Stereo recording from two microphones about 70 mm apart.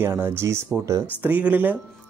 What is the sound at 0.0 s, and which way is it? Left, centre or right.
Speech, right.